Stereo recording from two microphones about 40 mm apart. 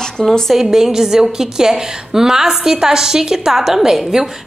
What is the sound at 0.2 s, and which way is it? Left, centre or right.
Speech, centre.